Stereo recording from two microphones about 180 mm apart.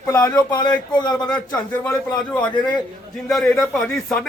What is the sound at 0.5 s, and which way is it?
Speech, 25° left (ahead or behind).